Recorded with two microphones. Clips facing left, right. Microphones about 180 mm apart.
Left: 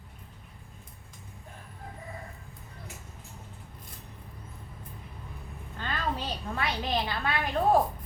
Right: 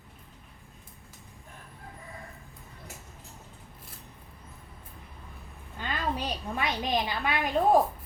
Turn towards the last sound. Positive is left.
turn(degrees=-15)  # may be behind; listen again after turning